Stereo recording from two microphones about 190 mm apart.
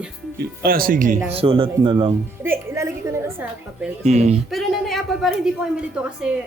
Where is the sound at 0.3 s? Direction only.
50° right (ahead or behind).